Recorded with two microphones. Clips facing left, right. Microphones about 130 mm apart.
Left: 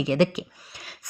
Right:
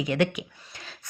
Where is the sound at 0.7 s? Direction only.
15° left (ahead or behind).